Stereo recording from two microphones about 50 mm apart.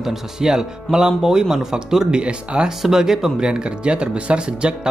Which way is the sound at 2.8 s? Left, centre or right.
Centre.